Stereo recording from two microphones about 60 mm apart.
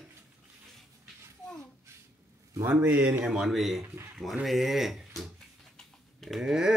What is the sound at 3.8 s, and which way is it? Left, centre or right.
Speech, right.